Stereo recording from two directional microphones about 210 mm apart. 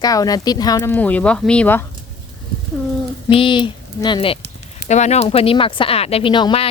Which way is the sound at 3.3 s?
25° left (ahead or behind).